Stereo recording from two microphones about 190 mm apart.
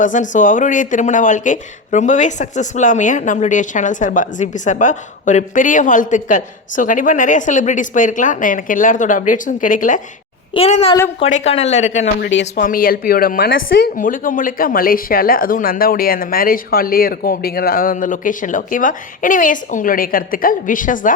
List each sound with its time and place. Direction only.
0.0 s speech: 40° left (ahead or behind)
10.5 s speech: 30° left (ahead or behind)
12.2 s speech: 65° left (ahead or behind)
12.6 s speech: 50° left (ahead or behind)